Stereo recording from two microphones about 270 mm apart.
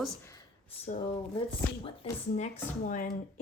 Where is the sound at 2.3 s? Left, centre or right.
Left.